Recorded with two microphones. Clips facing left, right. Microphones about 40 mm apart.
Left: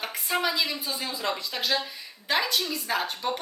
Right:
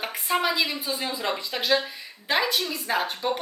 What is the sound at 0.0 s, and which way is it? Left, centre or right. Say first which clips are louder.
Speech: right 2 dB; centre.